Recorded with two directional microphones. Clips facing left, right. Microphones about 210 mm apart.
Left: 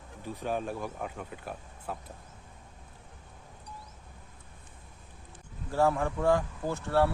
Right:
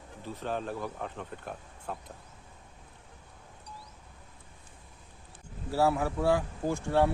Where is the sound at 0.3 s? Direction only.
10° left (ahead or behind).